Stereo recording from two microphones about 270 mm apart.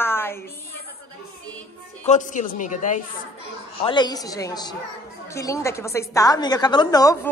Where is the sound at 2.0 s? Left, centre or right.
Left.